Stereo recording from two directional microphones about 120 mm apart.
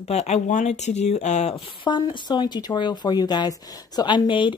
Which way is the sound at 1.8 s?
40° left (ahead or behind).